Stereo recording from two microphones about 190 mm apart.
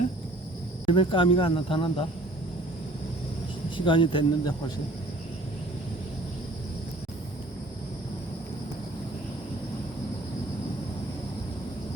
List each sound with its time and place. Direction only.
0.9 s speech: 25° left (ahead or behind)
3.8 s speech: 25° left (ahead or behind)